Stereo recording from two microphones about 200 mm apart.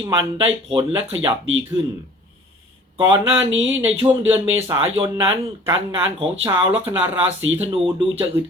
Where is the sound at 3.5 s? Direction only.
70° right (ahead or behind).